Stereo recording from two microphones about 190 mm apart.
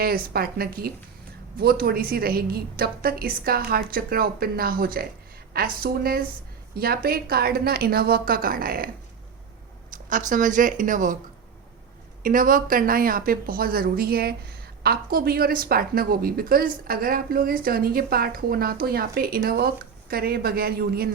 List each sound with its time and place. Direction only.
0.0 s speech: 55° right (ahead or behind)
9.9 s speech: 45° right (ahead or behind)
12.2 s speech: 45° right (ahead or behind)